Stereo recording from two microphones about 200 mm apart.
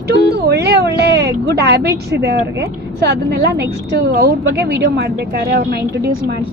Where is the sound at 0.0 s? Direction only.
55° right (ahead or behind).